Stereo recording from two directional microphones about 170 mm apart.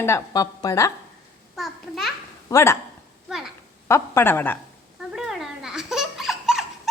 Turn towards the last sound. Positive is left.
turn(degrees=0)  # may be behind; listen again after turning